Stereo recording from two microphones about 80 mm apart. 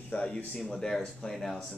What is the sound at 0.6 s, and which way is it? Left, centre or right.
Speech, centre.